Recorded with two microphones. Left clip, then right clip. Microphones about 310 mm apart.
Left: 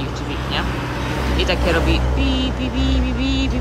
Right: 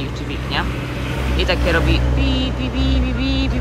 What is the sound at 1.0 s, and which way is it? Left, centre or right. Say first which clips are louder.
Vehicle: left 1 dB; left.